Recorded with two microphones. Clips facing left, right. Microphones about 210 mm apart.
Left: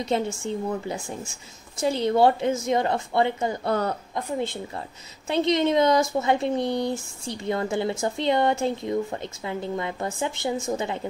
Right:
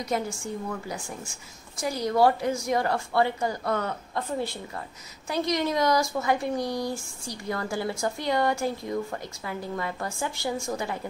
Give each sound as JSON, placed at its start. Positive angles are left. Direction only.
{"t": 0.0, "sound": "speech", "side_deg": 25}